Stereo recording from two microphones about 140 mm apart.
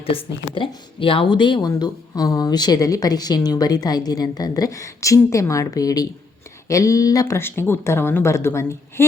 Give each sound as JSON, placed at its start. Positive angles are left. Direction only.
{"t": 0.0, "sound": "speech", "side_deg": 40}